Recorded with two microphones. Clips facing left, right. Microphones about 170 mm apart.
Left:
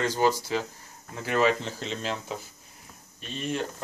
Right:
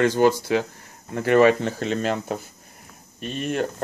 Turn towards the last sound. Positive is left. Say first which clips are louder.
# right 5 dB
turn(degrees=-55)  # may be behind; listen again after turning